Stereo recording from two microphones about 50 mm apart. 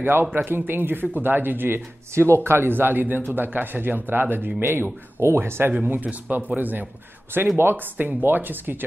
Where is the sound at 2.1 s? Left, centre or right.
Right.